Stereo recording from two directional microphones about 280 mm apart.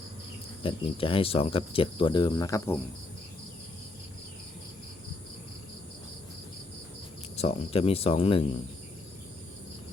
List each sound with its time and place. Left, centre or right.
0.6 s speech: centre
7.3 s speech: left